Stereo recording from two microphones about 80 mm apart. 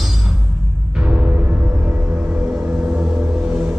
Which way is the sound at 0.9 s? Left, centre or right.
Centre.